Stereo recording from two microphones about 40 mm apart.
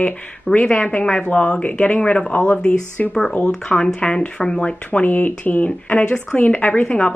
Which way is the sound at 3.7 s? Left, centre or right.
Left.